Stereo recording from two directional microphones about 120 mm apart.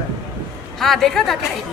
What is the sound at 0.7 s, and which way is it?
Speech, centre (ahead or behind).